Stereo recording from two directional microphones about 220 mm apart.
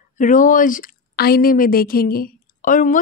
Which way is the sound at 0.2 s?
35° left (ahead or behind).